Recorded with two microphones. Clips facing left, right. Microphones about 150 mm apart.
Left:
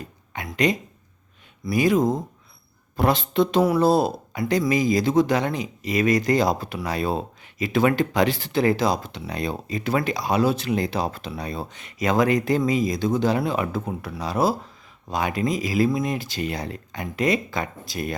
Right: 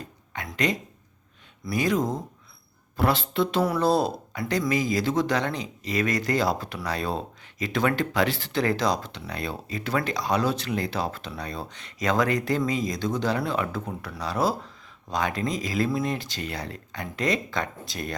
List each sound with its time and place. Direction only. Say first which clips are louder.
0.3 s speech: left 4 dB; 15° left (ahead or behind)